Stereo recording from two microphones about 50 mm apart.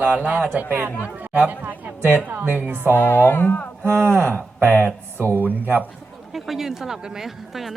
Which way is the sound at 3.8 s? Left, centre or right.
Right.